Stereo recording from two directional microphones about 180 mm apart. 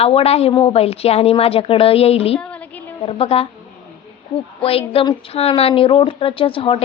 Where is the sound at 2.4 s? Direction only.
5° left (ahead or behind).